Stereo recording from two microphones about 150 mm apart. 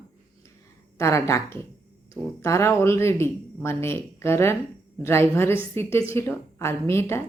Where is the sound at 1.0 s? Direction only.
20° left (ahead or behind).